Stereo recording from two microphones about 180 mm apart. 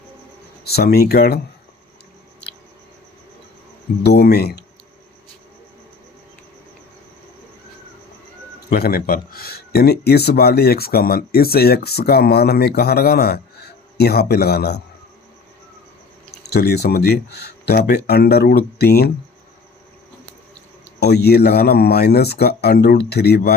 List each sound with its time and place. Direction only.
0.6 s speech: 60° left (ahead or behind)
4.0 s speech: 65° left (ahead or behind)
8.7 s speech: 55° left (ahead or behind)
16.4 s speech: 65° left (ahead or behind)
21.0 s speech: 65° left (ahead or behind)